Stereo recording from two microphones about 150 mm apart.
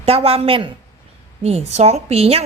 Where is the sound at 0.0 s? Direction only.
40° right (ahead or behind).